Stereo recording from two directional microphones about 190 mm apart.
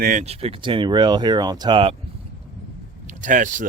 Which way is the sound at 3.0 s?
40° right (ahead or behind).